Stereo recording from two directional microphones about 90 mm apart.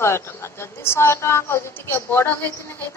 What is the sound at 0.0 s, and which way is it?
A woman's voice, 30° left (ahead or behind).